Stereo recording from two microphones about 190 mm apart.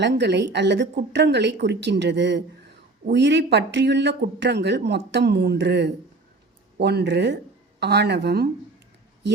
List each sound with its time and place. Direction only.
0.0 s speech: 65° right (ahead or behind)